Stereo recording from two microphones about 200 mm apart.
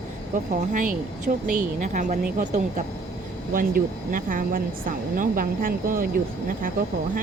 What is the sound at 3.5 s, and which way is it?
A woman's voice, 45° right (ahead or behind).